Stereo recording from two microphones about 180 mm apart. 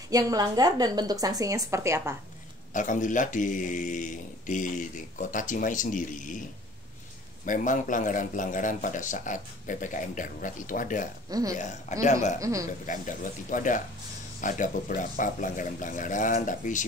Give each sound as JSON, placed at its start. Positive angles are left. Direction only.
{"t": 0.1, "sound": "a woman's voice", "side_deg": -20}
{"t": 2.7, "sound": "speech", "side_deg": 45}
{"t": 7.4, "sound": "speech", "side_deg": 45}
{"t": 11.2, "sound": "speech", "side_deg": -20}
{"t": 12.0, "sound": "speech", "side_deg": 40}
{"t": 12.4, "sound": "speech", "side_deg": -20}
{"t": 12.8, "sound": "speech", "side_deg": 45}